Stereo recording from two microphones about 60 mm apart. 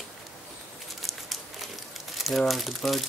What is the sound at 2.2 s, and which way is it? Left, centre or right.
Speech, centre.